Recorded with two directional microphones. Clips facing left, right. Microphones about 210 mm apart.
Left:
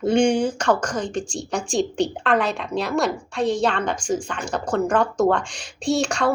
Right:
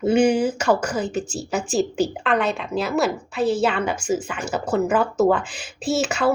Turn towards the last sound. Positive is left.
turn(degrees=-5)  # may be behind; listen again after turning